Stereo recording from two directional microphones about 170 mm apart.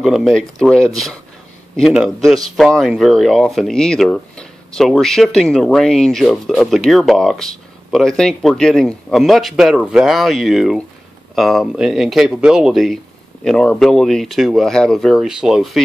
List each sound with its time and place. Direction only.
0.0 s speech: centre (ahead or behind)